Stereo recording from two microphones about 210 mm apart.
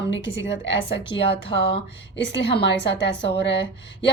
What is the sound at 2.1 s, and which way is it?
Speech, 55° left (ahead or behind).